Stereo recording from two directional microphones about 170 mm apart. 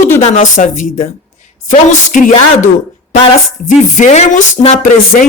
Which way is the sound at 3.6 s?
45° left (ahead or behind).